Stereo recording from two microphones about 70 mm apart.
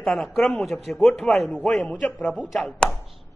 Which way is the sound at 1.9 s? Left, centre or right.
Left.